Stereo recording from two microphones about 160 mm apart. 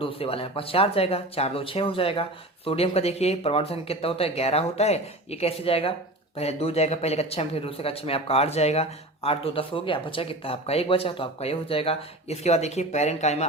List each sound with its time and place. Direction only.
0.0 s speech: 35° left (ahead or behind)